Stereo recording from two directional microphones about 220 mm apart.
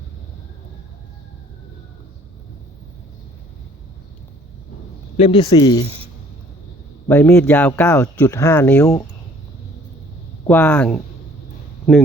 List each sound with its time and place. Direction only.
5.1 s a man's voice: 25° left (ahead or behind)
7.1 s speech: 5° left (ahead or behind)
10.4 s speech: 5° left (ahead or behind)